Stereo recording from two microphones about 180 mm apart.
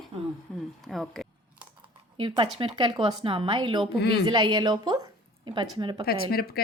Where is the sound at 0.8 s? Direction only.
Centre (ahead or behind).